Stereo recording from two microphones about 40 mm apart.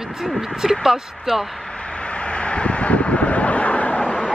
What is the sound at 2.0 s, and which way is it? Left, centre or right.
Vehicle, left.